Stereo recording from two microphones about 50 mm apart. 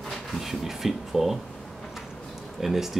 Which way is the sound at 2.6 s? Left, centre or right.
Centre.